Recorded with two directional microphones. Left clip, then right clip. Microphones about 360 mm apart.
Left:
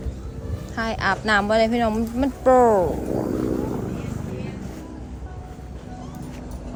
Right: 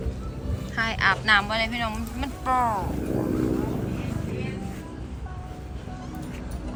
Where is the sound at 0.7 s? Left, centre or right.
Centre.